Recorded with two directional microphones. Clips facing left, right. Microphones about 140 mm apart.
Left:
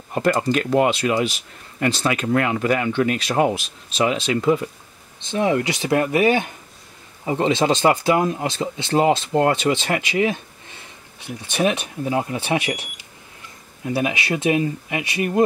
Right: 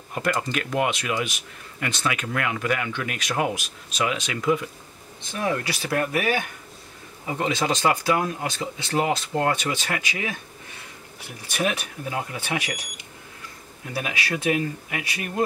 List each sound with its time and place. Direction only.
0.1 s speech: 35° left (ahead or behind)
13.9 s speech: 20° left (ahead or behind)